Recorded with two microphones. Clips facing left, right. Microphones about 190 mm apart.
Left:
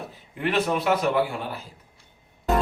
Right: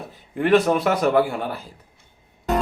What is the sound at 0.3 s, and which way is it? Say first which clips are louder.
Speech: right 7 dB; 45° right (ahead or behind).